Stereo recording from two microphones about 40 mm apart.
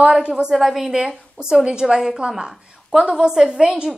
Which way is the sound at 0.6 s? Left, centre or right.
Centre.